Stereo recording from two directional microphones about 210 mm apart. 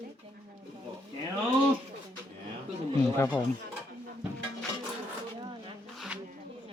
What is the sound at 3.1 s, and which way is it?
Speech, 10° left (ahead or behind).